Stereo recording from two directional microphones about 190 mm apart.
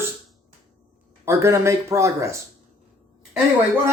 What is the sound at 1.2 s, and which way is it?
Speech, 15° right (ahead or behind).